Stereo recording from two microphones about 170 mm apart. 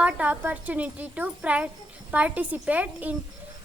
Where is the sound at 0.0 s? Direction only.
10° right (ahead or behind).